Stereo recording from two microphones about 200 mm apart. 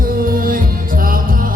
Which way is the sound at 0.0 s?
45° right (ahead or behind).